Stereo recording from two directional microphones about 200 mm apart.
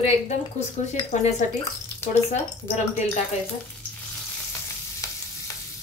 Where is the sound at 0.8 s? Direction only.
35° left (ahead or behind).